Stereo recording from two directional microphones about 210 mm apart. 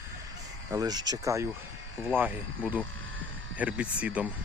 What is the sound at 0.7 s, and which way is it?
Speech, 20° right (ahead or behind).